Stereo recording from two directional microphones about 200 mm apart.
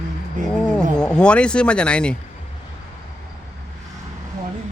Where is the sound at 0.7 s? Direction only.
5° left (ahead or behind).